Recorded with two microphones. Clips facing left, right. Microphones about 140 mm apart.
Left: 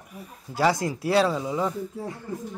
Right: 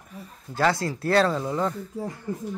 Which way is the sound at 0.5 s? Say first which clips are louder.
Left 1 dB; 15° left (ahead or behind).